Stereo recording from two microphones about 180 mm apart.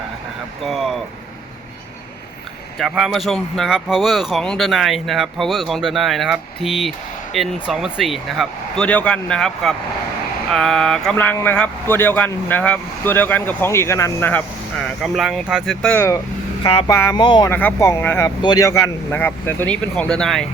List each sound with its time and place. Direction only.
0.6 s speech: centre (ahead or behind)
2.7 s speech: centre (ahead or behind); by 17.5 s 25° left (ahead or behind)
17.5 s speech: 10° left (ahead or behind)